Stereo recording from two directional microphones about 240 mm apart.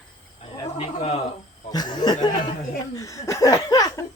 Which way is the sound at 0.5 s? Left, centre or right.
Left.